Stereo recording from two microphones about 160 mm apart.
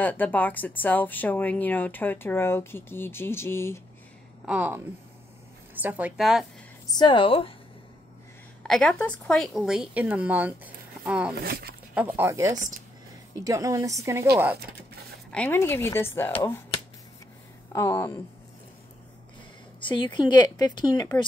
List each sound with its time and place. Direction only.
0.0 s speech: 10° left (ahead or behind)
4.5 s speech: 10° right (ahead or behind)
6.9 s speech: 30° left (ahead or behind)
8.6 s a woman's voice: 5° left (ahead or behind)
11.3 s speech: 80° right
11.9 s speech: 10° right (ahead or behind)
12.5 s speech: 50° right (ahead or behind)
13.4 s a woman's voice: 20° right (ahead or behind)
14.3 s speech: 10° right (ahead or behind)
15.3 s speech: 10° left (ahead or behind)
17.7 s speech: 15° left (ahead or behind)
19.8 s a woman's voice: 30° left (ahead or behind)